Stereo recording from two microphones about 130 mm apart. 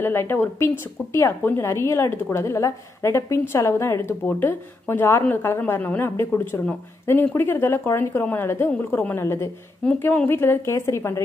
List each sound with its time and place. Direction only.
0.0 s a woman's voice: 15° left (ahead or behind)